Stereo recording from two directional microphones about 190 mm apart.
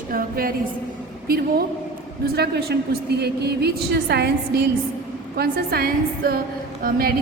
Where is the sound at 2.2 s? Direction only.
55° right (ahead or behind).